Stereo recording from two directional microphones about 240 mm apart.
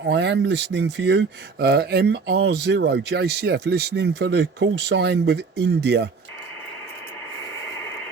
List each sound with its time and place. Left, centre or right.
0.0 s speech: right